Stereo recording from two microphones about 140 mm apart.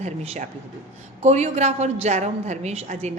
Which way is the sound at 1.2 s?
55° right (ahead or behind).